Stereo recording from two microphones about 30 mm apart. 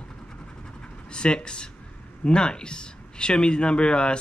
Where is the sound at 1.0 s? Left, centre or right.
Left.